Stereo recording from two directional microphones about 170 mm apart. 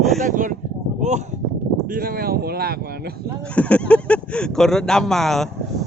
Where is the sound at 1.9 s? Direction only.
60° right (ahead or behind).